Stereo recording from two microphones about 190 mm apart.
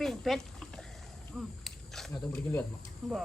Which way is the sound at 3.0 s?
Centre (ahead or behind).